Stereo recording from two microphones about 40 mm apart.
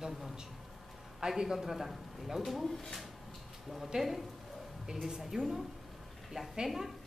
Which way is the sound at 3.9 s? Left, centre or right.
Centre.